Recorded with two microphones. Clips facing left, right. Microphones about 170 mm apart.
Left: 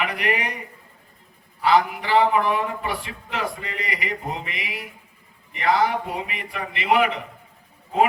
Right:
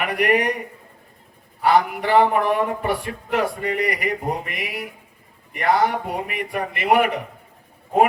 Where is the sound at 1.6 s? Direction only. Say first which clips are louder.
Right 2 dB; 50° right (ahead or behind).